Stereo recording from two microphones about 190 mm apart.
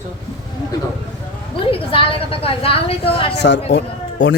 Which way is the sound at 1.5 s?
30° left (ahead or behind).